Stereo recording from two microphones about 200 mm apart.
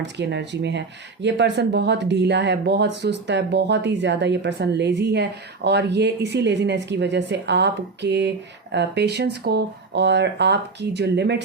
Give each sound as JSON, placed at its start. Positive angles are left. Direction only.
{"t": 0.0, "sound": "speech", "side_deg": -60}